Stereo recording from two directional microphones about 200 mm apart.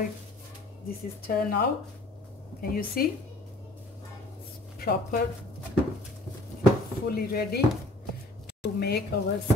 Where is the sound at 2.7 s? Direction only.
45° left (ahead or behind).